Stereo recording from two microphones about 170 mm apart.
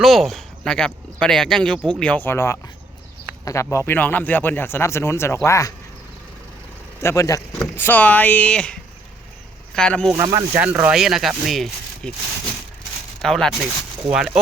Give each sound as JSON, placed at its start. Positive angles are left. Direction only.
{"t": 0.0, "sound": "a man's voice", "side_deg": 0}
{"t": 7.0, "sound": "a man's voice", "side_deg": 15}
{"t": 10.2, "sound": "speech", "side_deg": -15}
{"t": 13.2, "sound": "speech", "side_deg": 0}